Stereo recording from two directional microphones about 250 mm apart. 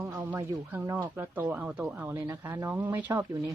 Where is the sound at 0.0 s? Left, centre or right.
Centre.